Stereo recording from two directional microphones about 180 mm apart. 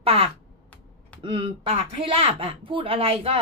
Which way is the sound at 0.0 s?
35° right (ahead or behind).